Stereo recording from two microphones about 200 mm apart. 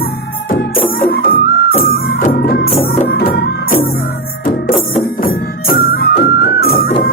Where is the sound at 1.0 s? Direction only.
50° left (ahead or behind).